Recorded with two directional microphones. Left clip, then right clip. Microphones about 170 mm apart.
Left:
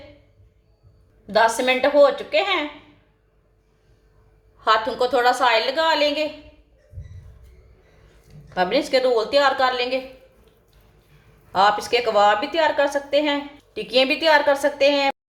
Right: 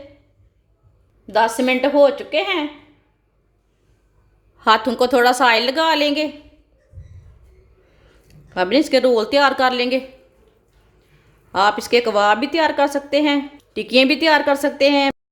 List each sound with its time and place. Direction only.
1.3 s a woman's voice: 40° right (ahead or behind)
4.5 s a woman's voice: 55° right (ahead or behind)
8.5 s a woman's voice: 55° right (ahead or behind)
11.5 s a woman's voice: 55° right (ahead or behind)